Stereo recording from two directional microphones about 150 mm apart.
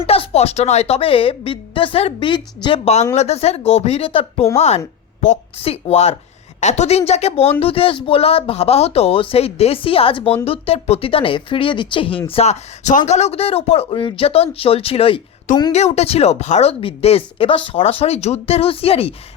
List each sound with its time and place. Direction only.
0.0 s a woman's voice: 40° left (ahead or behind)